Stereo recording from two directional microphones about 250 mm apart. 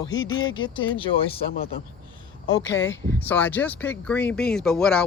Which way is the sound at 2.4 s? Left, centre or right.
Left.